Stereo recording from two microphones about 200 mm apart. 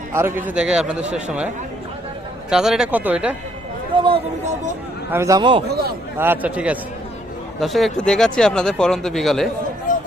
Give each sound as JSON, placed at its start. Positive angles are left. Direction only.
{"t": 0.1, "sound": "speech", "side_deg": -10}
{"t": 2.5, "sound": "speech", "side_deg": 0}
{"t": 3.9, "sound": "speech", "side_deg": -25}
{"t": 5.1, "sound": "speech", "side_deg": -15}
{"t": 5.6, "sound": "speech", "side_deg": -50}
{"t": 6.1, "sound": "a man's voice", "side_deg": -10}
{"t": 9.9, "sound": "a sound", "side_deg": 40}